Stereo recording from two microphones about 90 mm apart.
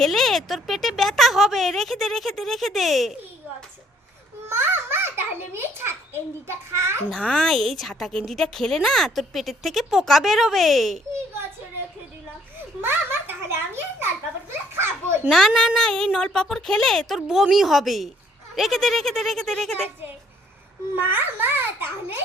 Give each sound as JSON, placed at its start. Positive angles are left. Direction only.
{"t": 0.0, "sound": "a woman's voice", "side_deg": 0}
{"t": 4.4, "sound": "a child's voice", "side_deg": -25}
{"t": 7.1, "sound": "a woman's voice", "side_deg": 10}
{"t": 12.8, "sound": "a child's voice", "side_deg": -25}
{"t": 15.3, "sound": "a woman's voice", "side_deg": 5}
{"t": 21.0, "sound": "a child's voice", "side_deg": -20}